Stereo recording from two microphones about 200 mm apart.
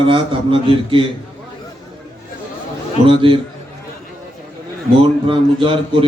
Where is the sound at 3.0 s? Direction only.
25° right (ahead or behind).